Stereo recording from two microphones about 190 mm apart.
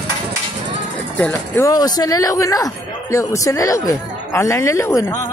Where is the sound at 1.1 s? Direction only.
10° left (ahead or behind).